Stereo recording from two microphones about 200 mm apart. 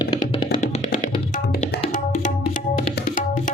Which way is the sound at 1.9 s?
40° left (ahead or behind).